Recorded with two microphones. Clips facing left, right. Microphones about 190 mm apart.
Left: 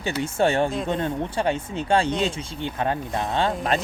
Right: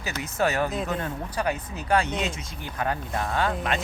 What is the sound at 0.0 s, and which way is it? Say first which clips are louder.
Speech: left 4 dB; 30° left (ahead or behind).